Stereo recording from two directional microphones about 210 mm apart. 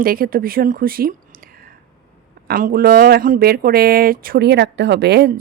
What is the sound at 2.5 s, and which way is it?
Speech, 45° right (ahead or behind).